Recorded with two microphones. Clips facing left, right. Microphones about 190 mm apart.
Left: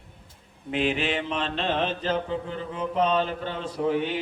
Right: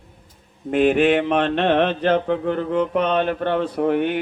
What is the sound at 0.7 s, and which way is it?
Mantra, 50° right (ahead or behind).